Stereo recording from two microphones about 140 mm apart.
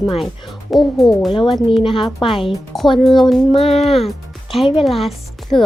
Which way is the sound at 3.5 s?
45° left (ahead or behind).